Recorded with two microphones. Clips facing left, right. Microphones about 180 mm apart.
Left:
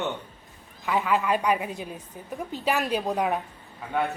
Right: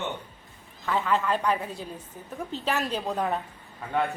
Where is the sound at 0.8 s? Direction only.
10° left (ahead or behind).